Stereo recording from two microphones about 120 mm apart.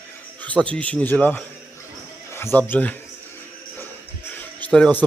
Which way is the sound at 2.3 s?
20° left (ahead or behind).